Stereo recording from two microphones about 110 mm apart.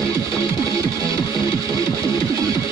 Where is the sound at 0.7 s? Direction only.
30° right (ahead or behind).